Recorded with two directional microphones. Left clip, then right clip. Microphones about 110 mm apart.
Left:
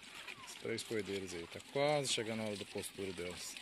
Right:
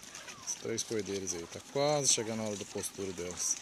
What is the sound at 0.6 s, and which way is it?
Speech, centre (ahead or behind).